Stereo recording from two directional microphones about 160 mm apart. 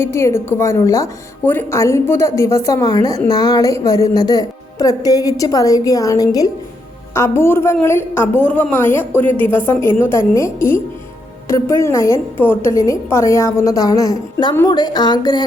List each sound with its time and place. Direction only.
0.0 s a woman's voice: 15° left (ahead or behind)